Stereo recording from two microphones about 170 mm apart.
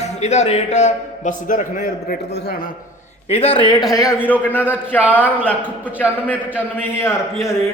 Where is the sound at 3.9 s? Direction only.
20° left (ahead or behind).